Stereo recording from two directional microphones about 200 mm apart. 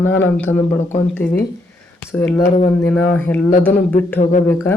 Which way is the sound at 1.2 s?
10° left (ahead or behind).